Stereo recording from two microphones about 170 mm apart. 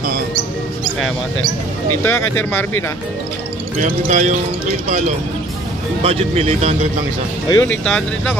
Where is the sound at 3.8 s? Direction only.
45° right (ahead or behind).